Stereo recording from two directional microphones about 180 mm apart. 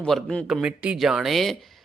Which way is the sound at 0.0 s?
5° left (ahead or behind).